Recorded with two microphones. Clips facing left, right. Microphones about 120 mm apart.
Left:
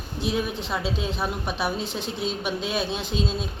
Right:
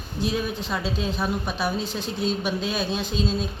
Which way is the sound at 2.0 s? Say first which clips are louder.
Right 2 dB; 65° left (ahead or behind).